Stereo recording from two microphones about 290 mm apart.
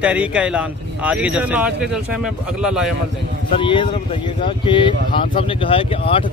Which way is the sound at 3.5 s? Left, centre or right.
Centre.